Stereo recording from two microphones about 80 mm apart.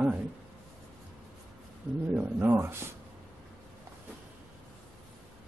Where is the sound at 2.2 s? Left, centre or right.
Right.